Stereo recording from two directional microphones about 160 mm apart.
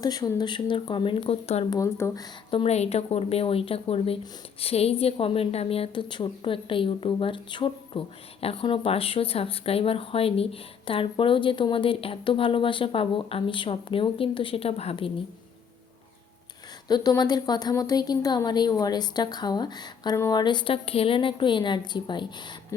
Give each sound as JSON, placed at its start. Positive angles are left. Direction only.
{"t": 0.0, "sound": "speech", "side_deg": 25}
{"t": 1.7, "sound": "speech", "side_deg": 20}
{"t": 2.5, "sound": "a woman's voice", "side_deg": 35}
{"t": 16.9, "sound": "speech", "side_deg": 25}